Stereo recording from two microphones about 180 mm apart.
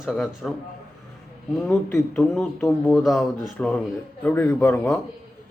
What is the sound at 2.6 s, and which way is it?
A man's voice, 15° left (ahead or behind).